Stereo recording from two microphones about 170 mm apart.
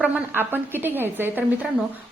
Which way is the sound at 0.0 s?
10° right (ahead or behind).